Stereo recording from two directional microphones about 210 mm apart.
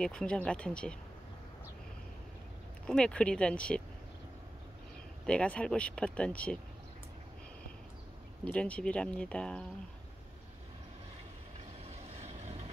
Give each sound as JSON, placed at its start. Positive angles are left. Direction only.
{"t": 0.0, "sound": "speech", "side_deg": 5}
{"t": 2.9, "sound": "speech", "side_deg": 5}
{"t": 5.2, "sound": "speech", "side_deg": 5}
{"t": 8.5, "sound": "speech", "side_deg": 5}
{"t": 11.8, "sound": "vehicle", "side_deg": -30}